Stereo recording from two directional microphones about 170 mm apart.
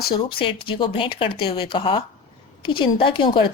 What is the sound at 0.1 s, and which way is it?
A woman's voice, 30° left (ahead or behind).